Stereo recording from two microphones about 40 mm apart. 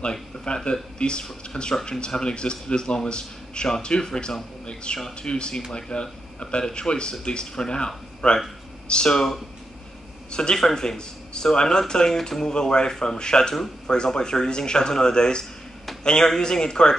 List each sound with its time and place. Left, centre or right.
0.5 s a man's voice: left